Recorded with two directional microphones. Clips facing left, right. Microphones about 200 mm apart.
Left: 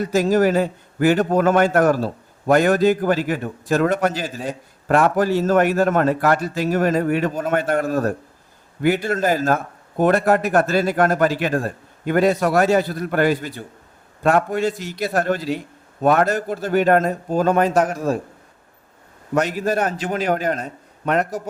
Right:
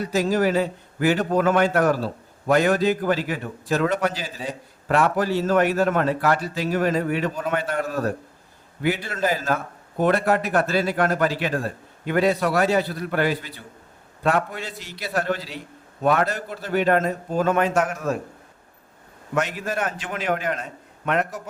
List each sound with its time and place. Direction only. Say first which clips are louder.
0.0 s a man's voice: left 4 dB; 45° left (ahead or behind)
19.3 s a man's voice: left 5 dB; 40° left (ahead or behind)